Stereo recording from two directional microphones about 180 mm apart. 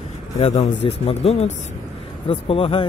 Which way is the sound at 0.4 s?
35° left (ahead or behind).